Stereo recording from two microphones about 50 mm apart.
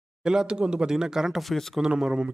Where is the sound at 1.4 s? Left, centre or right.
Centre.